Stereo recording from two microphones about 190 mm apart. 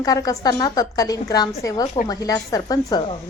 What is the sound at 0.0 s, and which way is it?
Speech, 20° left (ahead or behind).